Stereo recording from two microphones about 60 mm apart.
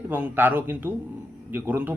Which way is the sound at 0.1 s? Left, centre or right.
Right.